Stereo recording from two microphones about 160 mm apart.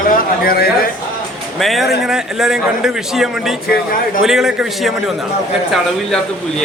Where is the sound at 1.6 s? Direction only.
Centre (ahead or behind).